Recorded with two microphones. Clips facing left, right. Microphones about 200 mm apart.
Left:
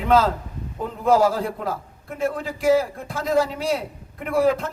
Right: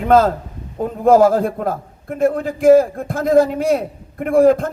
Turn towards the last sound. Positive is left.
turn(degrees=-50)  # may be behind; listen again after turning